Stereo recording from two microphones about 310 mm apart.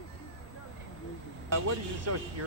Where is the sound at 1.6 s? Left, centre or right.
Right.